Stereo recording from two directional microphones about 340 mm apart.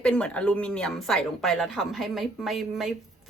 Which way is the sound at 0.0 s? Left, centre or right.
Centre.